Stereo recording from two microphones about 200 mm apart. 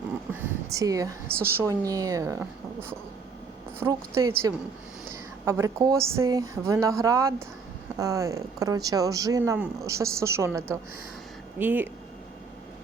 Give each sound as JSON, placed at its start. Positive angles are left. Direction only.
{"t": 0.3, "sound": "speech", "side_deg": -15}